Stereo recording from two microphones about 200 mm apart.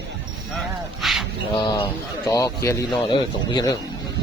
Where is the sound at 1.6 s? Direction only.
20° left (ahead or behind).